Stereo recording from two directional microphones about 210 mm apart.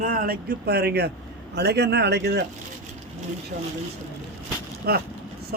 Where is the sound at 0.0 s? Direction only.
40° right (ahead or behind).